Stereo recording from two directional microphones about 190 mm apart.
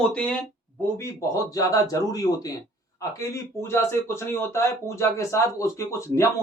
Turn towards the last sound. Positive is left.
turn(degrees=15)  # may be behind; listen again after turning